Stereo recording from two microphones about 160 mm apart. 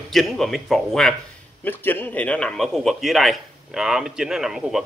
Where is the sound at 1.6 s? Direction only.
10° left (ahead or behind).